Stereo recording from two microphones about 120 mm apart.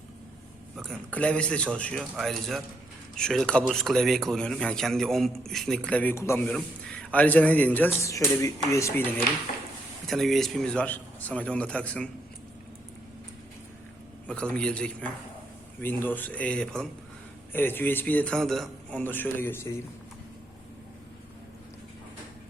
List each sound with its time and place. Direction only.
1.1 s a man's voice: 10° left (ahead or behind)
6.5 s a man's voice: 10° left (ahead or behind)
8.0 s speech: 25° left (ahead or behind)
10.1 s a man's voice: centre (ahead or behind)
14.3 s a man's voice: 10° left (ahead or behind)